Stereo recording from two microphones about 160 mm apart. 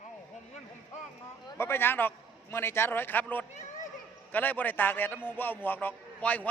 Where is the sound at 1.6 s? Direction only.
15° left (ahead or behind).